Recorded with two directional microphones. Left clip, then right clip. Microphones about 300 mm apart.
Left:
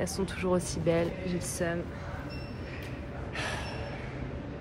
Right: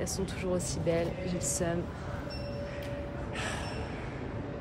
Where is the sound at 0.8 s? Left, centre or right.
Centre.